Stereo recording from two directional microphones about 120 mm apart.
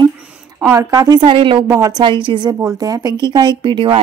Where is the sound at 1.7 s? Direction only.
30° right (ahead or behind).